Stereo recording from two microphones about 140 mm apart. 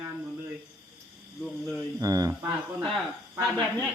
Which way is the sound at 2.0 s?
25° right (ahead or behind).